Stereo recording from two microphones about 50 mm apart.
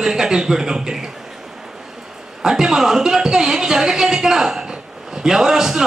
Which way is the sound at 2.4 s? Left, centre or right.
Centre.